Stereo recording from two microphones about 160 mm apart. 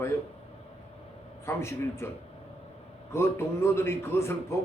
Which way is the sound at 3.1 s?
15° left (ahead or behind).